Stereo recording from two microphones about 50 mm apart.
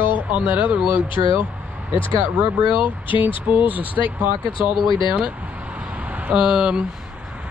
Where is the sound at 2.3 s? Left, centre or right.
Right.